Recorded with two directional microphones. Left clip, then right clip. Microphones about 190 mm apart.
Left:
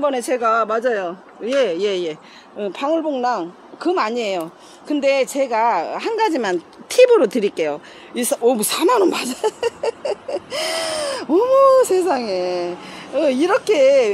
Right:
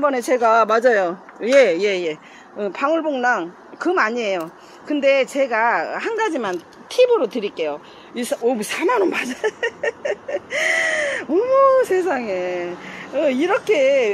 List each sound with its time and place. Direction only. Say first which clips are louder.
0.0 s speech: right 1 dB; centre (ahead or behind)
1.8 s a woman's voice: right 1 dB; 10° left (ahead or behind)
3.2 s speech: right 1 dB; 25° right (ahead or behind)
3.8 s a woman's voice: right 1 dB; 5° left (ahead or behind); by 6.5 s 25° left (ahead or behind)
6.9 s speech: left 4 dB; 55° left (ahead or behind); by 14.1 s 25° left (ahead or behind)